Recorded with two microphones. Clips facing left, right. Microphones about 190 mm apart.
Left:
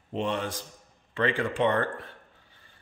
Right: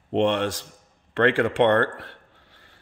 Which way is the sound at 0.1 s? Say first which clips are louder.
Right 8 dB; 80° right.